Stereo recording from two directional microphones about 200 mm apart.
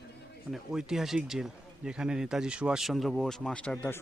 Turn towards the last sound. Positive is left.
turn(degrees=5)  # may be behind; listen again after turning